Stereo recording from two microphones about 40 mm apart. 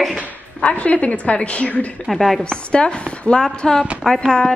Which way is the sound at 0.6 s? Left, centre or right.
Left.